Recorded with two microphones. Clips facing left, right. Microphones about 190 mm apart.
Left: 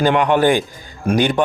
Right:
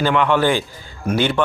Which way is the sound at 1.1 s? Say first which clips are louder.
Left 3 dB; 15° left (ahead or behind).